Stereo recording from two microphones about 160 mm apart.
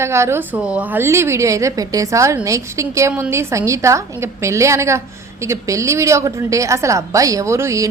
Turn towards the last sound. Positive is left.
turn(degrees=-20)  # may be behind; listen again after turning